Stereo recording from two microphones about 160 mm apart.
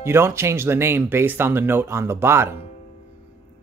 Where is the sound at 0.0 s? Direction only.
15° right (ahead or behind).